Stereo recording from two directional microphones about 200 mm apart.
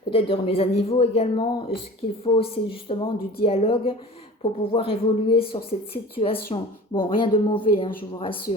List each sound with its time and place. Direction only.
0.1 s speech: 30° left (ahead or behind)